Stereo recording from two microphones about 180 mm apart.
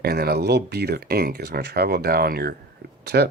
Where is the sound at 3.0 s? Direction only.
65° right (ahead or behind).